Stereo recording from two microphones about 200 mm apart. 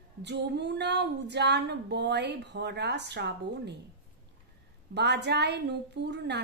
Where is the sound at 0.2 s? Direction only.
60° right (ahead or behind).